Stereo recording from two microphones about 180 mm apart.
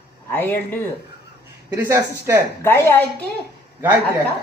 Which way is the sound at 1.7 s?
15° right (ahead or behind).